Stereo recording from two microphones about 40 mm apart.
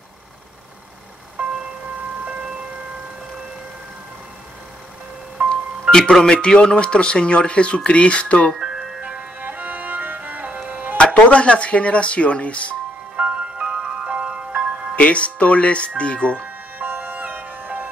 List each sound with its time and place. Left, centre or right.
1.4 s vehicle: right
2.2 s siren: right
6.2 s speech: left
9.4 s music: right
11.0 s speech: left
13.1 s music: right
15.0 s speech: left
16.7 s music: right